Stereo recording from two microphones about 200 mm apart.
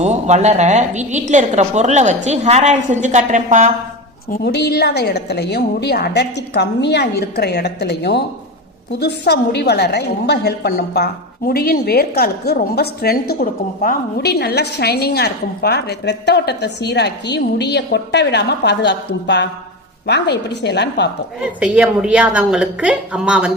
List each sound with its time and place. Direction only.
0.0 s a woman's voice: 35° right (ahead or behind)
4.3 s a woman's voice: 55° left (ahead or behind)
21.6 s a woman's voice: 5° right (ahead or behind)